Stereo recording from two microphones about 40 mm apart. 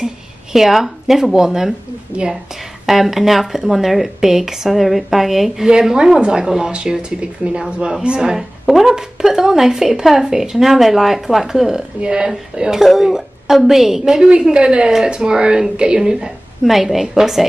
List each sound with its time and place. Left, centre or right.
0.0 s speech: centre
2.1 s a woman's voice: right
2.9 s speech: centre
5.7 s speech: centre
6.7 s speech: right
12.0 s speech: right
14.5 s speech: right; by 17.5 s centre